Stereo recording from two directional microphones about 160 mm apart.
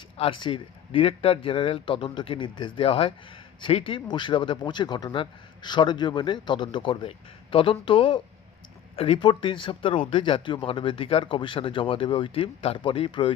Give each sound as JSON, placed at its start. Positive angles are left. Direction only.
{"t": 0.2, "sound": "speech", "side_deg": 30}